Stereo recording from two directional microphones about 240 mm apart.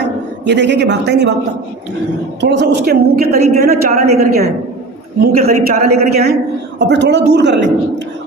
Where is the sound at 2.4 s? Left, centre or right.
Right.